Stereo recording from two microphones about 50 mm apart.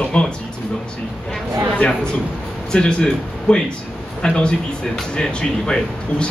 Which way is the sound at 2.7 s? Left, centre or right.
Centre.